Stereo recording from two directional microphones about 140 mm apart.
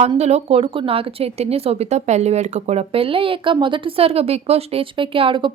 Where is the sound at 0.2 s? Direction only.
50° right (ahead or behind).